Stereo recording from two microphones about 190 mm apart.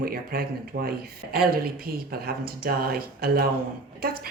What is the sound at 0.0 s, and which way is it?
A woman's voice, 50° right (ahead or behind).